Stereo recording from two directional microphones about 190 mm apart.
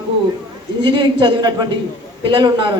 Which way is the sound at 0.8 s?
25° right (ahead or behind).